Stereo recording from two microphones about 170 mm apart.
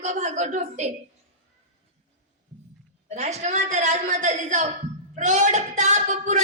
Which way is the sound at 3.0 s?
40° right (ahead or behind).